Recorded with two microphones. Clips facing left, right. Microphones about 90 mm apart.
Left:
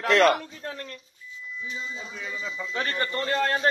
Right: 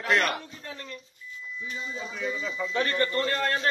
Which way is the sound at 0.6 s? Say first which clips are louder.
Left 5 dB; 50° left (ahead or behind).